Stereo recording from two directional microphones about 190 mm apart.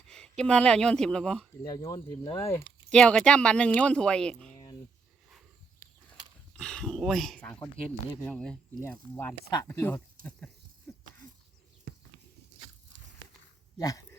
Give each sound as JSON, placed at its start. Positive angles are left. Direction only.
{"t": 0.1, "sound": "speech", "side_deg": 5}
{"t": 1.6, "sound": "speech", "side_deg": 20}
{"t": 2.9, "sound": "speech", "side_deg": 5}
{"t": 6.6, "sound": "speech", "side_deg": 5}
{"t": 10.2, "sound": "speech", "side_deg": -45}
{"t": 13.7, "sound": "a sound", "side_deg": 20}